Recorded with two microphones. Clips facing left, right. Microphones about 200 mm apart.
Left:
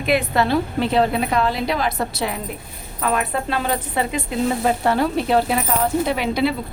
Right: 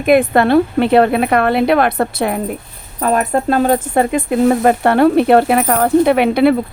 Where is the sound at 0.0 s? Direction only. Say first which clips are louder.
Right 8 dB; 50° right (ahead or behind).